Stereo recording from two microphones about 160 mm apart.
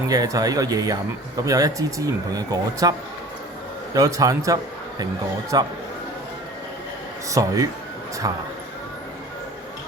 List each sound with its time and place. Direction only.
0.1 s speech: 25° right (ahead or behind)
3.9 s a man's voice: 20° right (ahead or behind)
7.3 s speech: 20° right (ahead or behind)